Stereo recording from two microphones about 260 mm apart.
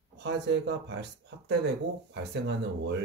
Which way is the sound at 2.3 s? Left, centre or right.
Right.